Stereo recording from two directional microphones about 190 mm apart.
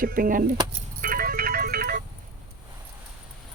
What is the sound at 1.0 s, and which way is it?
Music, 50° right (ahead or behind).